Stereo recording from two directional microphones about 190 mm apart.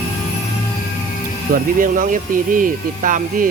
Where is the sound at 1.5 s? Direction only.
45° right (ahead or behind).